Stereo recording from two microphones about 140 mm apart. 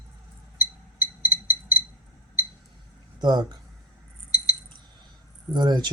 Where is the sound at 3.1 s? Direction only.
30° right (ahead or behind).